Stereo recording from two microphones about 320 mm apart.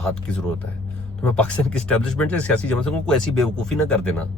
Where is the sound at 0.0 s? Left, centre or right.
Centre.